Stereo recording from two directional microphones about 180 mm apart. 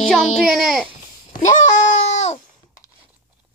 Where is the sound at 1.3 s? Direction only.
45° left (ahead or behind).